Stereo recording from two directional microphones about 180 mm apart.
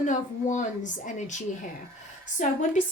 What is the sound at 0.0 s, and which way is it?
A woman's voice, 45° left (ahead or behind).